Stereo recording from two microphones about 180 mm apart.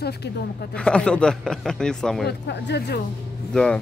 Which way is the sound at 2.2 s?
70° left (ahead or behind).